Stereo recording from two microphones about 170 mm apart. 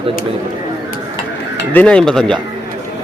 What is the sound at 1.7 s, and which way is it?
Speech, 5° left (ahead or behind).